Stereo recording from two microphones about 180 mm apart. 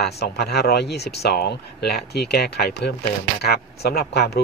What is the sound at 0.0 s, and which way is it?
Speech, 65° left (ahead or behind).